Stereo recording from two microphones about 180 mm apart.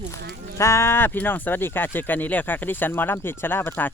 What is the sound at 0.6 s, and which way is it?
Speech, 15° left (ahead or behind).